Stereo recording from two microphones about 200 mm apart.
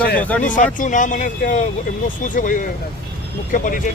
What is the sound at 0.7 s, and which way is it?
Speech, 40° left (ahead or behind).